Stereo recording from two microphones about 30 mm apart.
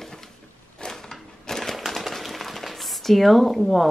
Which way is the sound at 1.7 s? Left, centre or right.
Centre.